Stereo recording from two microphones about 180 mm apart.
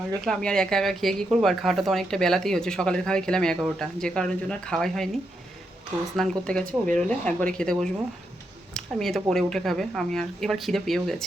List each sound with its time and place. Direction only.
0.3 s a woman's voice: 5° left (ahead or behind)
6.1 s a woman's voice: 5° left (ahead or behind)